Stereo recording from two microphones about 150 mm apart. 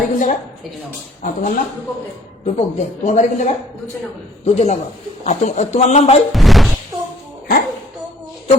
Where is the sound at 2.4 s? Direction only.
50° left (ahead or behind).